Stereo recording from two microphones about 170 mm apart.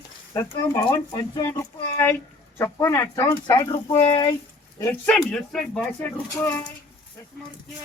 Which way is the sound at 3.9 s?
35° left (ahead or behind).